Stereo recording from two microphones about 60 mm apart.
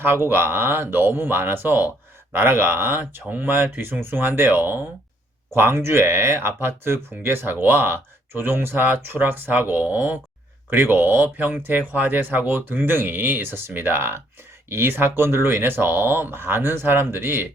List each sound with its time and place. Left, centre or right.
0.0 s speech: right
10.7 s speech: right